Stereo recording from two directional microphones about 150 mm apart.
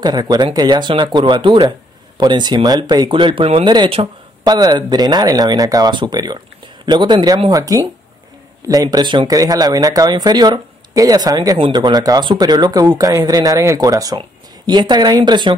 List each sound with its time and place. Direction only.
0.0 s speech: 30° right (ahead or behind)